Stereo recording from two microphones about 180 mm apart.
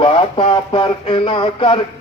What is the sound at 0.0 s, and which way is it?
Speech, 30° left (ahead or behind).